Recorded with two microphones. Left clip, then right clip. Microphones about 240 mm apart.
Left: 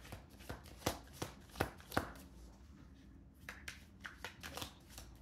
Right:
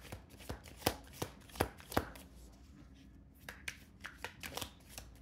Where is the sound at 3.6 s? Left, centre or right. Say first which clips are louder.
Right 4 dB; right.